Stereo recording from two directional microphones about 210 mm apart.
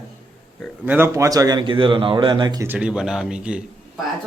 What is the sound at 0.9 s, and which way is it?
A man's voice, 10° right (ahead or behind).